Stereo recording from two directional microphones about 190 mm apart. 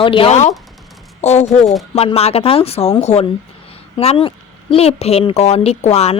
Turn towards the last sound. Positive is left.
turn(degrees=35)  # may be behind; listen again after turning